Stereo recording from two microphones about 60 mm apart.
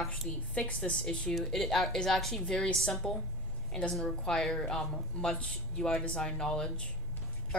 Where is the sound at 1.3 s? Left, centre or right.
Centre.